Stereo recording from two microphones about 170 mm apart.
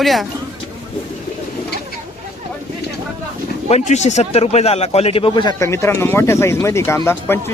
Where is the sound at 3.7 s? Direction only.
40° left (ahead or behind).